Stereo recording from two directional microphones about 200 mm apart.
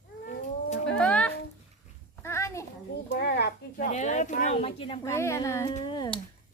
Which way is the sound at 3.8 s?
35° left (ahead or behind).